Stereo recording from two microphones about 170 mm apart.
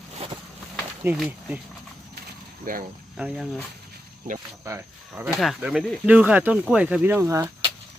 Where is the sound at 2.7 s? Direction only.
55° right (ahead or behind).